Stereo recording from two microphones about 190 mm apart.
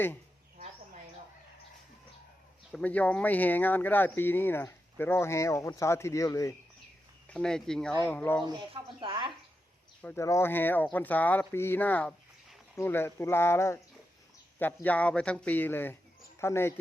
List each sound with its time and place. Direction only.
2.7 s speech: 5° left (ahead or behind)
7.3 s speech: 5° left (ahead or behind)
8.4 s speech: 25° right (ahead or behind)
10.0 s speech: 10° left (ahead or behind)